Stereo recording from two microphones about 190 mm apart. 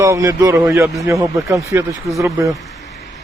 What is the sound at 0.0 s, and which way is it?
Speech, 15° right (ahead or behind).